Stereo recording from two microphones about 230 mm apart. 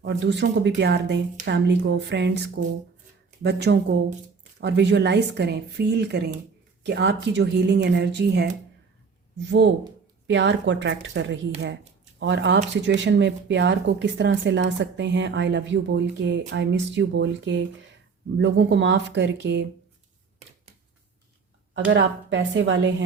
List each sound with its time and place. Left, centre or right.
0.0 s speech: right
3.4 s speech: right
9.5 s speech: right
21.7 s speech: right